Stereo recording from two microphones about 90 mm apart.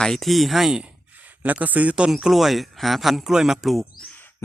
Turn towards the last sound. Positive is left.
turn(degrees=-5)  # may be behind; listen again after turning